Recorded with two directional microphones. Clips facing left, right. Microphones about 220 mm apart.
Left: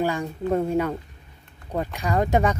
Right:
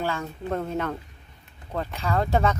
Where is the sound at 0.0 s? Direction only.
15° left (ahead or behind).